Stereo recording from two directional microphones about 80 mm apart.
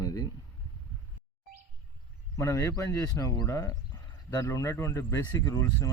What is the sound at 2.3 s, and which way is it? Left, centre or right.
Speech, left.